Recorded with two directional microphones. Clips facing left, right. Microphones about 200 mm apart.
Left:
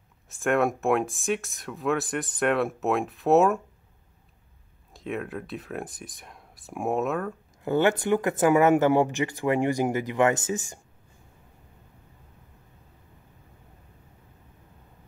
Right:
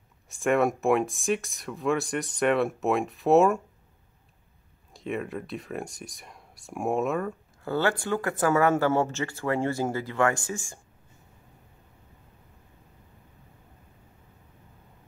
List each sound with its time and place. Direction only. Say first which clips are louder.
0.3 s speech: even; centre (ahead or behind)
4.9 s speech: even; centre (ahead or behind)
7.6 s speech: left 4 dB; 20° left (ahead or behind)